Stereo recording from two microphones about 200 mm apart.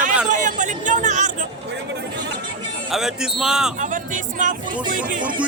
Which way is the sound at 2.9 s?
Centre (ahead or behind).